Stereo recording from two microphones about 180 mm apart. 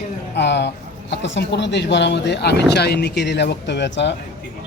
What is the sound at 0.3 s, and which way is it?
Speech, 70° left (ahead or behind).